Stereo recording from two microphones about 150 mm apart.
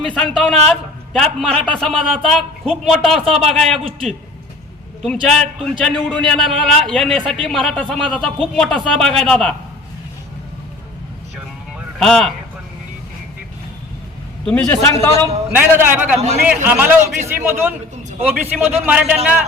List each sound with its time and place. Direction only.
0.0 s a man's voice: 5° left (ahead or behind)
5.2 s a man's voice: 5° left (ahead or behind)
11.9 s a man's voice: 5° left (ahead or behind)
14.4 s a man's voice: 10° left (ahead or behind)
15.5 s a man's voice: 15° right (ahead or behind)